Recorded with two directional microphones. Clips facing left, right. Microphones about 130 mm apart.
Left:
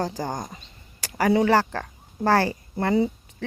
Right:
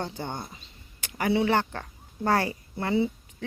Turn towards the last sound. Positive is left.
turn(degrees=40)  # may be behind; listen again after turning